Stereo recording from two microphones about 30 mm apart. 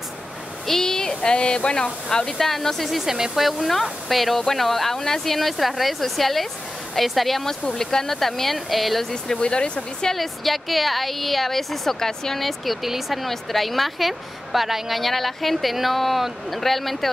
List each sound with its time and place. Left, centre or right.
0.7 s a sound: centre; by 1.9 s left
2.0 s speech: left
2.3 s speech: centre
3.0 s speech: centre
3.3 s a woman's voice: centre
4.9 s a woman's voice: centre
7.8 s a woman's voice: centre
9.4 s speech: left
10.1 s a woman's voice: centre
12.1 s speech: centre
12.4 s a woman's voice: centre
13.3 s a woman's voice: centre